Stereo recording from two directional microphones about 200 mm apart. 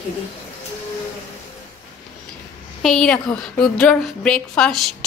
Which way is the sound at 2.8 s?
Centre (ahead or behind).